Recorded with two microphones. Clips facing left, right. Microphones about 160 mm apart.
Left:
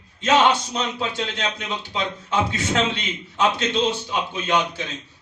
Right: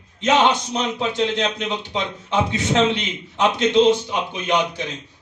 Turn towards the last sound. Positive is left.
turn(degrees=-15)  # may be behind; listen again after turning